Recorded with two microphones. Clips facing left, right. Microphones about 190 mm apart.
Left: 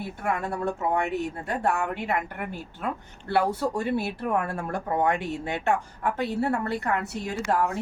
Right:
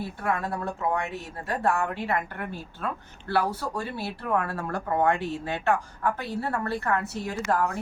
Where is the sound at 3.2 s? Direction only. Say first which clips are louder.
Left 3 dB; 20° left (ahead or behind).